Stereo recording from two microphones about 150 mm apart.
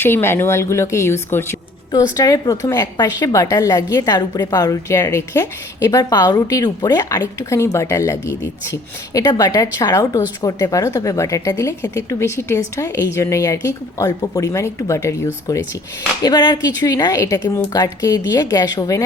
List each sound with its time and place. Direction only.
0.0 s a woman's voice: 15° left (ahead or behind)